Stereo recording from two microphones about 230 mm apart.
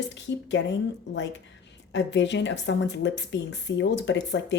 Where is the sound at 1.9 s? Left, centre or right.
Left.